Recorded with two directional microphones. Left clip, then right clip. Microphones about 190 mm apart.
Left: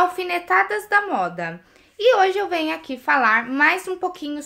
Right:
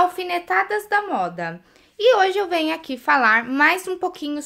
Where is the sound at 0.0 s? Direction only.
15° right (ahead or behind).